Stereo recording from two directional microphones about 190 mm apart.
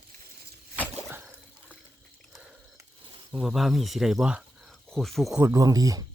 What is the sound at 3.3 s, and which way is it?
Speech, centre (ahead or behind).